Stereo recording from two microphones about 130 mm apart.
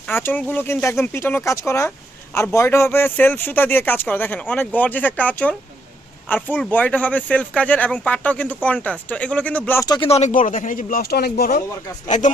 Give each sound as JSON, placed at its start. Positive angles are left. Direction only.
{"t": 0.1, "sound": "speech", "side_deg": 15}
{"t": 10.0, "sound": "speech", "side_deg": 55}
{"t": 12.0, "sound": "speech", "side_deg": 75}